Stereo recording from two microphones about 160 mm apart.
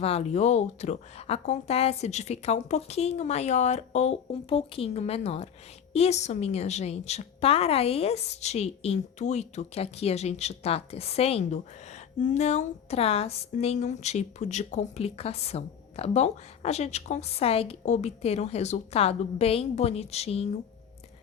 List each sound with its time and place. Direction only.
0.0 s a woman's voice: 40° left (ahead or behind)